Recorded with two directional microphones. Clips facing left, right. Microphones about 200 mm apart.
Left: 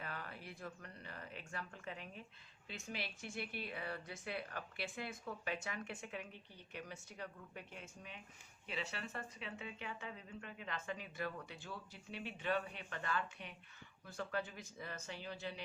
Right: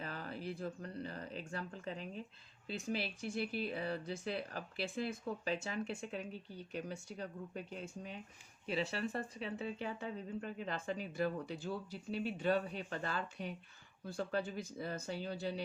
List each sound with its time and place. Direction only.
0.0 s speech: 35° right (ahead or behind)